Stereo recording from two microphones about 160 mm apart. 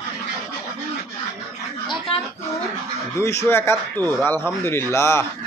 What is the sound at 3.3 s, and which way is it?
A man's voice, 15° left (ahead or behind).